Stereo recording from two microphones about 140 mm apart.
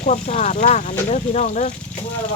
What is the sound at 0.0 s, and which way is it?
Speech, 55° left (ahead or behind).